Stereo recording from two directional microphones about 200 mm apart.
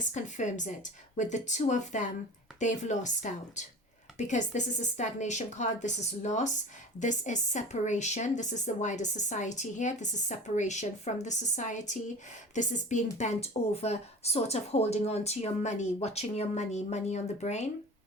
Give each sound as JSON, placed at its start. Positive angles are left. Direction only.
{"t": 0.0, "sound": "a woman's voice", "side_deg": 40}